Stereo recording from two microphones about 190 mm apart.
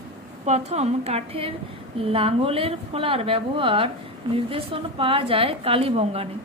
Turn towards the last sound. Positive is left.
turn(degrees=-30)  # may be behind; listen again after turning